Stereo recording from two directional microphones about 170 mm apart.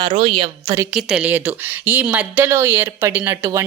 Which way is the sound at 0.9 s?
5° right (ahead or behind).